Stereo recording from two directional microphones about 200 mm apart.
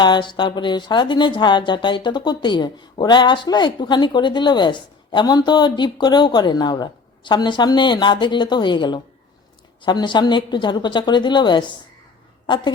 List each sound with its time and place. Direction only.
0.0 s speech: 20° left (ahead or behind)